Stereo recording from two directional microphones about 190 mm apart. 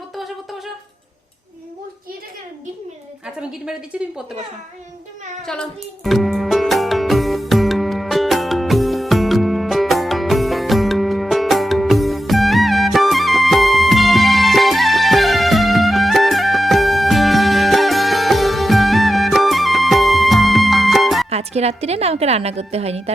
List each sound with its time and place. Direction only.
3.9 s speech: 5° right (ahead or behind)
5.5 s music: centre (ahead or behind)
21.2 s a woman's voice: 35° right (ahead or behind)